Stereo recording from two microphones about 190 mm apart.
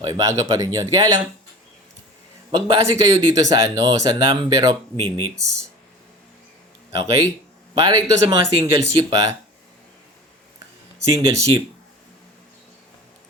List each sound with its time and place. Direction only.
0.0 s speech: 20° right (ahead or behind)
2.5 s speech: 20° right (ahead or behind)
6.9 s speech: 15° right (ahead or behind)
11.1 s speech: 15° right (ahead or behind)